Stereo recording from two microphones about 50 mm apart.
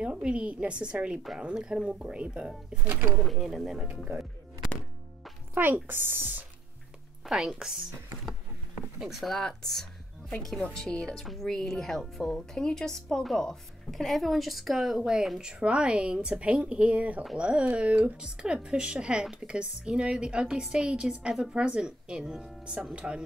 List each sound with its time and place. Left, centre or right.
0.0 s a woman's voice: right
2.9 s speech: right
3.3 s speech: centre
5.5 s speech: right
7.2 s speech: centre
9.0 s a woman's voice: centre; by 23.2 s right